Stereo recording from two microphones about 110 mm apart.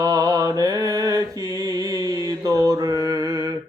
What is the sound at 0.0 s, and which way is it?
Mantra, 35° right (ahead or behind).